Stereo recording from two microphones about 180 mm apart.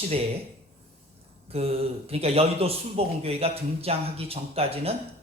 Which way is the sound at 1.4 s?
35° right (ahead or behind).